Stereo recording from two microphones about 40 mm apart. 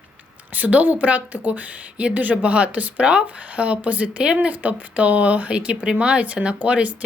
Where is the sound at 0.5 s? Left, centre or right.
Right.